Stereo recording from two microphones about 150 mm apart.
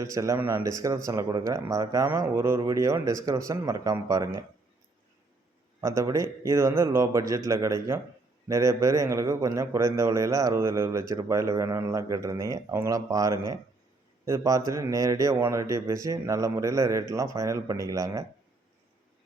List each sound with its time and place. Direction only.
0.0 s a man's voice: 20° right (ahead or behind)
5.8 s a man's voice: 20° right (ahead or behind)